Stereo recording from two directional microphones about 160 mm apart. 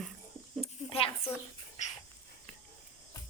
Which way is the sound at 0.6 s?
35° left (ahead or behind).